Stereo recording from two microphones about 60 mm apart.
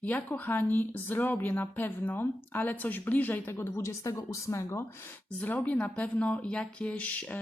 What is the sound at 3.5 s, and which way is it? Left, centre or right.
Speech, left.